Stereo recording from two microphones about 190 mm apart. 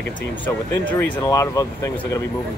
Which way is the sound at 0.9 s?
10° left (ahead or behind).